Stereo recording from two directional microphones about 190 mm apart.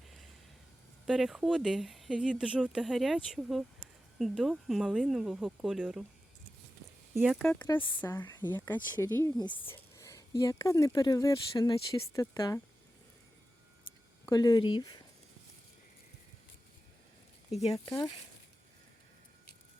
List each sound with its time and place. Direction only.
1.0 s speech: centre (ahead or behind)
7.1 s speech: centre (ahead or behind); by 12.6 s 15° left (ahead or behind)
14.3 s speech: 20° left (ahead or behind)
17.6 s speech: 30° left (ahead or behind)